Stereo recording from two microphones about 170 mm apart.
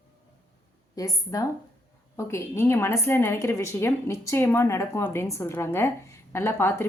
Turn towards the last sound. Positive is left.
turn(degrees=15)  # may be behind; listen again after turning